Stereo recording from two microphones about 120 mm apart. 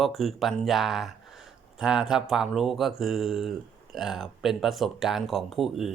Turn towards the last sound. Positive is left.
turn(degrees=0)  # may be behind; listen again after turning